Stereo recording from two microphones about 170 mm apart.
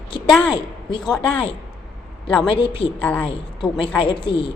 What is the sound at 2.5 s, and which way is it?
Speech, 30° left (ahead or behind).